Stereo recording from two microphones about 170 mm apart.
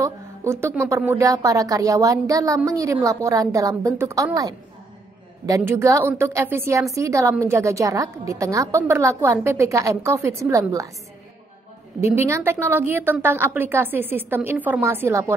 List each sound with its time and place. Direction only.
0.0 s a sound: 15° right (ahead or behind)
0.8 s speech: 15° right (ahead or behind)
5.6 s a woman's voice: 15° right (ahead or behind)
12.0 s a woman's voice: 15° right (ahead or behind)